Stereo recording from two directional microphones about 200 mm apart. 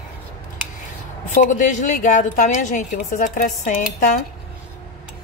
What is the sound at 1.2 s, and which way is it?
A woman's voice, 40° left (ahead or behind).